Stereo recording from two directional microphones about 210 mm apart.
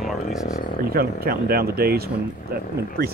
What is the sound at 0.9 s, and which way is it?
Speech, 45° right (ahead or behind).